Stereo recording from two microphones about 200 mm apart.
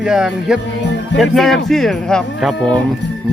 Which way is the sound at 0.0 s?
Centre (ahead or behind).